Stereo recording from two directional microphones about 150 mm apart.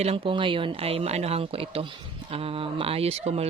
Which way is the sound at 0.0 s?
40° right (ahead or behind).